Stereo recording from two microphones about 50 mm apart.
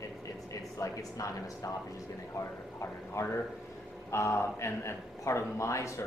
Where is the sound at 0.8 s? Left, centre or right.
Left.